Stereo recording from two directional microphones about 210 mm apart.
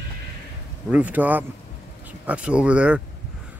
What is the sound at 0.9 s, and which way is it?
Speech, 5° right (ahead or behind).